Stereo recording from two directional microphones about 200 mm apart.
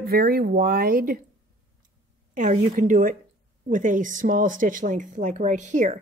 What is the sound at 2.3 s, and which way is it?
A woman's voice, 40° right (ahead or behind).